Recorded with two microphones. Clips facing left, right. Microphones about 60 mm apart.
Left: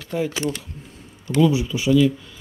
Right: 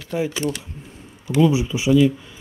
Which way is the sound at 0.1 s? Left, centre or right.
Centre.